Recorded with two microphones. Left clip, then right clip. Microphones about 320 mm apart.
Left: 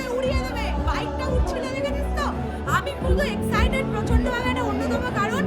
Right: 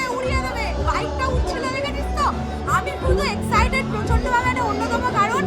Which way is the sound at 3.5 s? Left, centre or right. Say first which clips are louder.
Right 6 dB; centre.